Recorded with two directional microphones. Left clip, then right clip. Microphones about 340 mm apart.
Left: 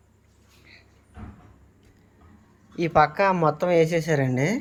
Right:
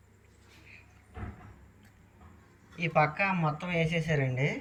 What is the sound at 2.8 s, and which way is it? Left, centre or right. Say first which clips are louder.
Speech: left 8 dB; centre.